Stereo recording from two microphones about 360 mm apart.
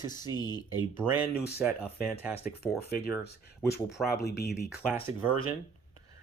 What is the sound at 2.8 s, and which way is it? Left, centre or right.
Speech, left.